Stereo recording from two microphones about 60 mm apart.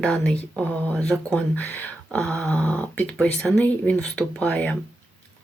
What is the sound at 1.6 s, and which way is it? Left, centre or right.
Speech, left.